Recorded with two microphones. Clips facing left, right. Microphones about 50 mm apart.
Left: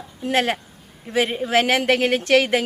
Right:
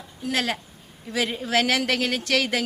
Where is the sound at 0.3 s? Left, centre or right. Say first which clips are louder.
Left 5 dB; left.